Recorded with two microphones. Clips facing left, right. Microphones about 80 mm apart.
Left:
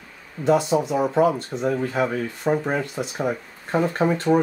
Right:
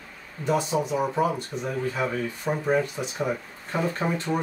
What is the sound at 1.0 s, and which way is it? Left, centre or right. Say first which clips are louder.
Speech: left 6 dB; centre.